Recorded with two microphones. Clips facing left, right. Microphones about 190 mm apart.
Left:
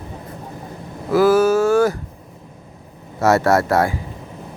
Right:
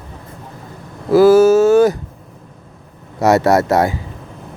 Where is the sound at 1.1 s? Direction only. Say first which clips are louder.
Right 5 dB; 30° right (ahead or behind).